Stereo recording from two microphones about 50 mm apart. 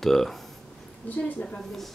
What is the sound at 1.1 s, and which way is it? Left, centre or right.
Speech, left.